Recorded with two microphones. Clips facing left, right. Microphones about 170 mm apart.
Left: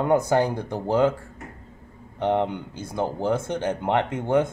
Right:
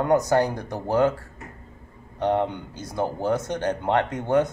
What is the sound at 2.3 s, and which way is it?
Speech, 20° left (ahead or behind).